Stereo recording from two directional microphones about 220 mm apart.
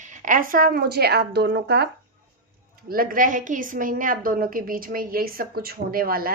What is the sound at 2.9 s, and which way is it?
A woman's voice, 40° right (ahead or behind).